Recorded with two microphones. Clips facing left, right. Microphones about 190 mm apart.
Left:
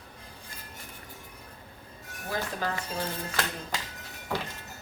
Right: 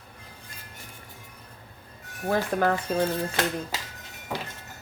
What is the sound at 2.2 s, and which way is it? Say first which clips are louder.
Speech: right 8 dB; 60° right (ahead or behind).